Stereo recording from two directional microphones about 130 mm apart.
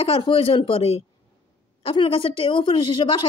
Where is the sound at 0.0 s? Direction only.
45° left (ahead or behind).